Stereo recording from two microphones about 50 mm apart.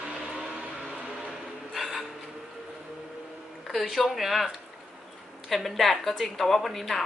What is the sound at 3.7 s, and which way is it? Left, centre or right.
A woman's voice, centre.